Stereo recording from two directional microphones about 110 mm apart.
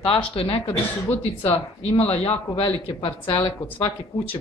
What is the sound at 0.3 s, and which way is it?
Speech, 55° left (ahead or behind).